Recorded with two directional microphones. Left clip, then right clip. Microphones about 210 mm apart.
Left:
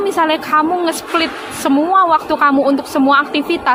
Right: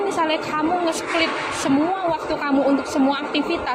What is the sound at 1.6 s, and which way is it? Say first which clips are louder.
A woman's voice: left 10 dB; 50° left (ahead or behind).